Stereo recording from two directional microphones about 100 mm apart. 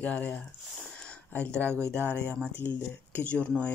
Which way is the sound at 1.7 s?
25° right (ahead or behind).